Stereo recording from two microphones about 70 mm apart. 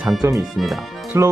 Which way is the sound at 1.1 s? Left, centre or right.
Right.